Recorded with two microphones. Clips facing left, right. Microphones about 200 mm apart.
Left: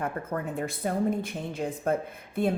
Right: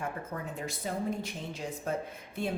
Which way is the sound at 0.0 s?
60° left (ahead or behind).